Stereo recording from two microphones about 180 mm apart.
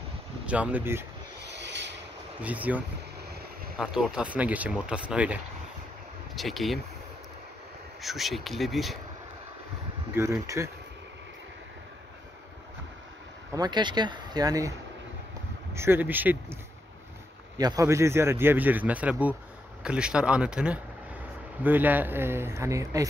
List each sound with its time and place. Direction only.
0.5 s a man's voice: 10° right (ahead or behind)
1.4 s a sound: 75° right (ahead or behind)
2.4 s a man's voice: 10° right (ahead or behind)
8.0 s speech: centre (ahead or behind)
10.1 s a man's voice: 15° right (ahead or behind)
13.6 s a man's voice: 25° right (ahead or behind)
17.6 s a man's voice: 20° right (ahead or behind)